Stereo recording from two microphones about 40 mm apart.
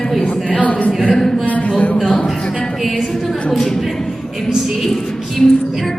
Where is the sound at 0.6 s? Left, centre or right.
Left.